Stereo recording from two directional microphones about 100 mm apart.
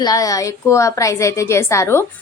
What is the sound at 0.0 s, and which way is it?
A woman's voice, 35° left (ahead or behind).